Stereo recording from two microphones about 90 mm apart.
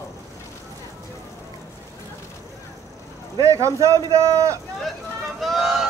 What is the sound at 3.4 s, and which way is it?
A man's voice, 35° right (ahead or behind).